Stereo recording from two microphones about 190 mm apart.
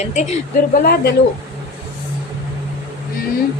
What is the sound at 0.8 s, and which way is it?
Speech, 55° left (ahead or behind).